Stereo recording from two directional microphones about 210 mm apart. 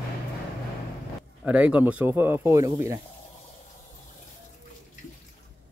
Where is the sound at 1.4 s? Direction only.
5° right (ahead or behind).